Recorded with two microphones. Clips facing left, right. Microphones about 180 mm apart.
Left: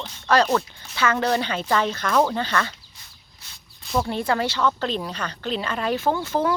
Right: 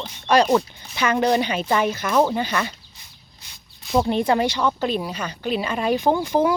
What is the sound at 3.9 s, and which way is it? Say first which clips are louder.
A woman's voice: right 4 dB; 20° right (ahead or behind).